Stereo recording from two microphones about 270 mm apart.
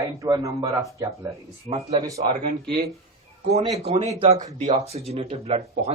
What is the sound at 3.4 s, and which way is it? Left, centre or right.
Speech, right.